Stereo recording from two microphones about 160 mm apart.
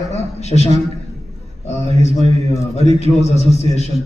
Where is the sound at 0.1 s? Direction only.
45° left (ahead or behind).